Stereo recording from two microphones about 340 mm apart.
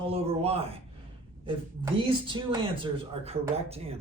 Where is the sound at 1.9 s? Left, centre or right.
Centre.